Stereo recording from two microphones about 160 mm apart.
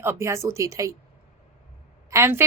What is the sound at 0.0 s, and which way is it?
Speech, 15° right (ahead or behind).